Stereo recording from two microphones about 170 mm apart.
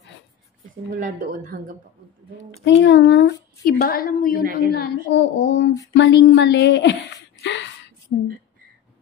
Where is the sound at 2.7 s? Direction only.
85° left.